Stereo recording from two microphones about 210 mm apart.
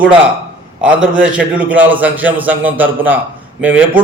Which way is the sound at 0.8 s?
5° right (ahead or behind).